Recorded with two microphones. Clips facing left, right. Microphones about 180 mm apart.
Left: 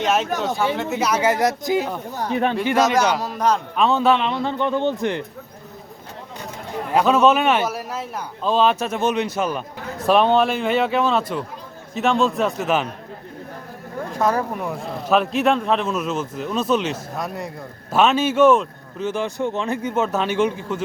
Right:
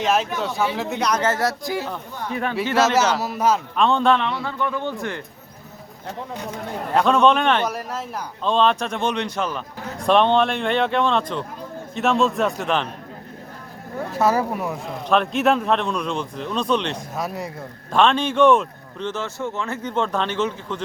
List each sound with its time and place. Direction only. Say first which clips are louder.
0.0 s speech: left 1 dB; centre (ahead or behind); by 2.6 s 20° left (ahead or behind)
2.7 s a man's voice: right 2 dB; 5° right (ahead or behind)
3.8 s speech: left 1 dB; 5° left (ahead or behind)
4.4 s speech: left 5 dB; 25° left (ahead or behind)
6.9 s speech: left 1 dB; 5° left (ahead or behind)
14.2 s speech: right 1 dB; 5° right (ahead or behind); by 20.8 s 10° left (ahead or behind)